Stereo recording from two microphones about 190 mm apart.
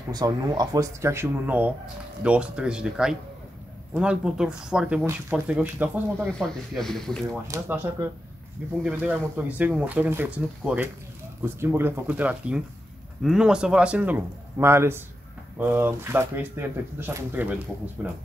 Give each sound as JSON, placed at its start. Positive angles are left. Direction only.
{"t": 0.1, "sound": "speech", "side_deg": -20}
{"t": 6.2, "sound": "speech", "side_deg": 5}
{"t": 7.4, "sound": "speech", "side_deg": -15}
{"t": 8.8, "sound": "speech", "side_deg": -10}